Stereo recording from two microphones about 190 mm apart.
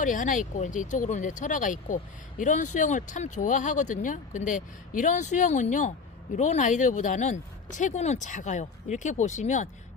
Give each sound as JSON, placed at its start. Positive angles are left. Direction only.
{"t": 0.0, "sound": "speech", "side_deg": 45}